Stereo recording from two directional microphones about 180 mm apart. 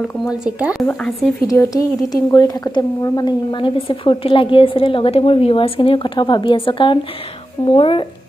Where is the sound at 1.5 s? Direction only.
20° left (ahead or behind).